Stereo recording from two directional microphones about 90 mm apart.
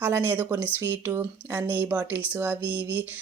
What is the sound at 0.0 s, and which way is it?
Speech, 20° right (ahead or behind).